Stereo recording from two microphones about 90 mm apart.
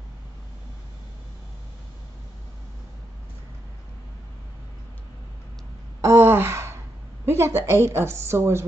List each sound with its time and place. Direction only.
5.9 s gasp: 30° right (ahead or behind)
7.2 s a woman's voice: 30° right (ahead or behind)